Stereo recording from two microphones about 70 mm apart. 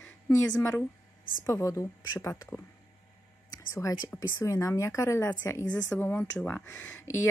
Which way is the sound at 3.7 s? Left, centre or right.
Left.